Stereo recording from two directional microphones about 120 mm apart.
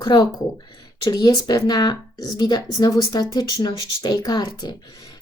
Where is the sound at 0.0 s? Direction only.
35° left (ahead or behind).